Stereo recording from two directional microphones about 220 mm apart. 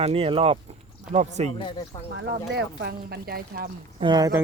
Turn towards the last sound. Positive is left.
turn(degrees=-15)  # may be behind; listen again after turning